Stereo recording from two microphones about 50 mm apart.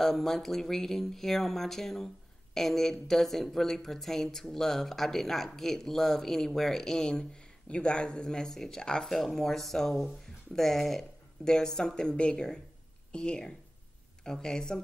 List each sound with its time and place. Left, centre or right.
0.0 s speech: centre